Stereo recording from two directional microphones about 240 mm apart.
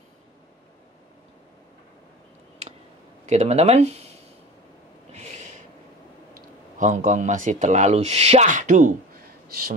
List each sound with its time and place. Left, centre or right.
3.3 s speech: right
5.1 s snort: right
6.8 s speech: right